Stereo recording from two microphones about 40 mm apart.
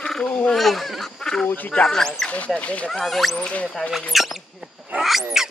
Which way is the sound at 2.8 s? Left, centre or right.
Centre.